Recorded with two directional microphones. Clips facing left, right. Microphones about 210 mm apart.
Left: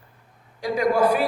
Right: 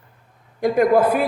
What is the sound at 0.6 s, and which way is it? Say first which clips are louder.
Speech: right 5 dB; 55° right (ahead or behind).